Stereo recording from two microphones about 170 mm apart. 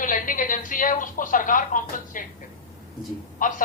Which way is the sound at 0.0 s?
50° left (ahead or behind).